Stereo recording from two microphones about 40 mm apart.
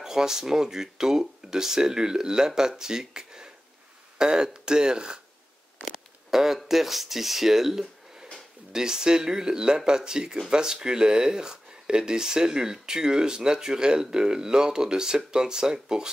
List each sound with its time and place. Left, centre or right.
0.0 s speech: centre
6.3 s speech: centre